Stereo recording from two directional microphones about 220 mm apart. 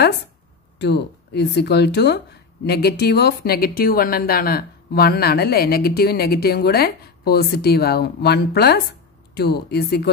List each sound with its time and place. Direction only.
0.7 s speech: 50° left (ahead or behind)